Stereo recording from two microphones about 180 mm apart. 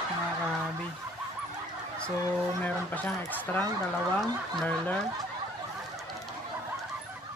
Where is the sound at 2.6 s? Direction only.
10° left (ahead or behind).